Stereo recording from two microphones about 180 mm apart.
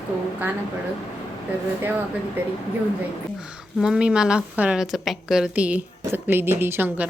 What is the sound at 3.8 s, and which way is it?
A woman's voice, 5° right (ahead or behind).